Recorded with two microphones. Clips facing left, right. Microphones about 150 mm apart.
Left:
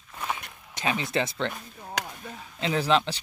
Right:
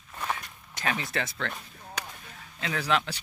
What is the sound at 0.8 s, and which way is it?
Speech, 20° left (ahead or behind).